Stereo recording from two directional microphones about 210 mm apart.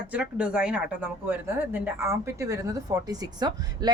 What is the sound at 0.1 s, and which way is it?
Speech, 5° right (ahead or behind).